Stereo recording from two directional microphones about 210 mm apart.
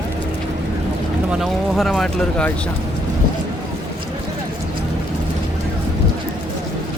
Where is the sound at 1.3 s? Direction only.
Centre (ahead or behind).